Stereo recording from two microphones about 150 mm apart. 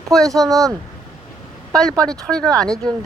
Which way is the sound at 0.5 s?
20° right (ahead or behind).